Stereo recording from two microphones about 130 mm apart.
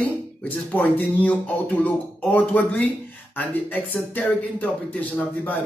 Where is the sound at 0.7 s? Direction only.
15° left (ahead or behind).